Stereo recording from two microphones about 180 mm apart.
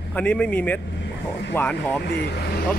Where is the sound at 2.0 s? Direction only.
65° left (ahead or behind).